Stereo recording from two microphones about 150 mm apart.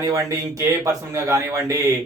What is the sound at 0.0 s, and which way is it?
Speech, 25° right (ahead or behind).